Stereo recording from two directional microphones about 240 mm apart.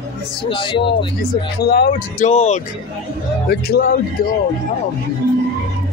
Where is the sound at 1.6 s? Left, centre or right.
Left.